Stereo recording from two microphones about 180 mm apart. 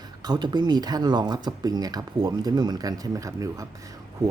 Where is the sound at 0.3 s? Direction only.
25° right (ahead or behind).